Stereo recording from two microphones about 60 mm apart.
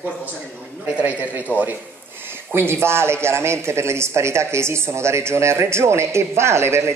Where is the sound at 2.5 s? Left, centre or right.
Right.